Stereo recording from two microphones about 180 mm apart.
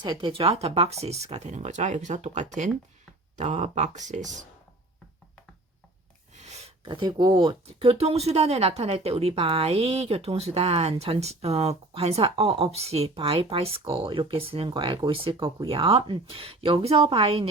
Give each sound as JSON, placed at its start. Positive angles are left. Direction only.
{"t": 0.0, "sound": "speech", "side_deg": -25}
{"t": 6.3, "sound": "a sound", "side_deg": -40}
{"t": 6.8, "sound": "speech", "side_deg": -25}